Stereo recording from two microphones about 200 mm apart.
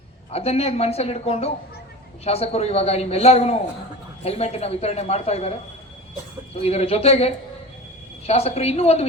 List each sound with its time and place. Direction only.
0.3 s a man's voice: 30° left (ahead or behind)